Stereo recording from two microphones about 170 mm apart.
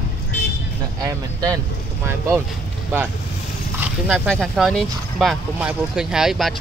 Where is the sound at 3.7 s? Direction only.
5° right (ahead or behind).